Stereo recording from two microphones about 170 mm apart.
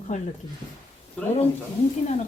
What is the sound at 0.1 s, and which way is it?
Speech, 45° left (ahead or behind).